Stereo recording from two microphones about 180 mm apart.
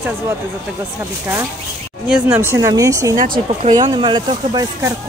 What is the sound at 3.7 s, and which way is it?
Speech, 25° right (ahead or behind).